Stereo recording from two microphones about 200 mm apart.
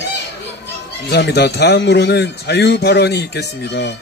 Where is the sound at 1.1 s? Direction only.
55° left (ahead or behind).